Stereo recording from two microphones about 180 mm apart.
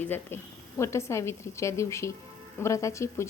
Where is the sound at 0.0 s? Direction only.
10° left (ahead or behind).